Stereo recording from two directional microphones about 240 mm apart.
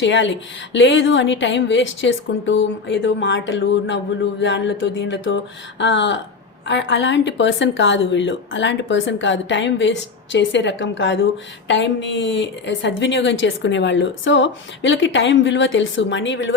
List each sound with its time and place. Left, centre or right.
0.0 s a woman's voice: left